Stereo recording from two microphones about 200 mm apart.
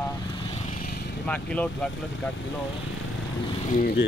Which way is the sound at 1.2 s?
5° left (ahead or behind).